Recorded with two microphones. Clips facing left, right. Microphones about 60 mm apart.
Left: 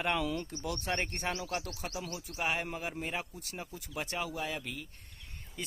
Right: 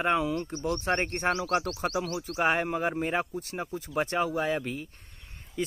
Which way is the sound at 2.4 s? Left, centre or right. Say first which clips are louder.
Right 8 dB; right.